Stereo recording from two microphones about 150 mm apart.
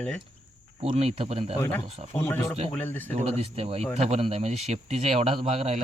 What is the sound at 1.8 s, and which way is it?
Speech, 45° right (ahead or behind).